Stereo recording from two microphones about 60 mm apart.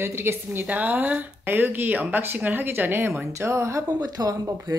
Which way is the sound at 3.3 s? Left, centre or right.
Right.